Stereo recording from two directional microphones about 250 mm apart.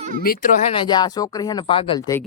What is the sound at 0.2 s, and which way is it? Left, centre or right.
Speech, left.